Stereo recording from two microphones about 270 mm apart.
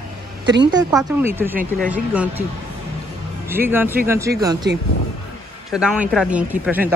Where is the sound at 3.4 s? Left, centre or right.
Centre.